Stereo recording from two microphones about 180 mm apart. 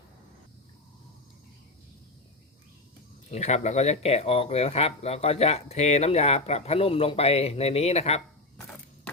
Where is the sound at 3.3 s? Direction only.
40° left (ahead or behind).